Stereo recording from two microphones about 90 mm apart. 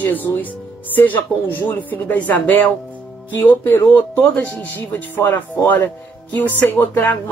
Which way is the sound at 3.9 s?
20° left (ahead or behind).